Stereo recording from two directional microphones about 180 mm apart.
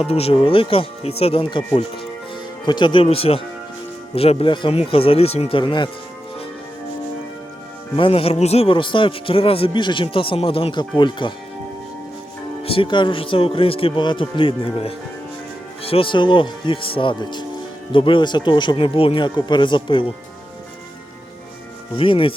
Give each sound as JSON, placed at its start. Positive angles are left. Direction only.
{"t": 0.0, "sound": "speech", "side_deg": 35}
{"t": 7.9, "sound": "a man's voice", "side_deg": 30}
{"t": 12.6, "sound": "a man's voice", "side_deg": 30}
{"t": 21.9, "sound": "a man's voice", "side_deg": 30}